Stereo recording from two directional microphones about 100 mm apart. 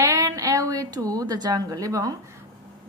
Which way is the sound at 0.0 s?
30° right (ahead or behind).